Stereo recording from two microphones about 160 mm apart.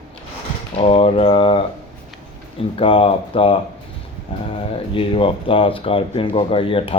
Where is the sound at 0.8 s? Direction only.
35° left (ahead or behind).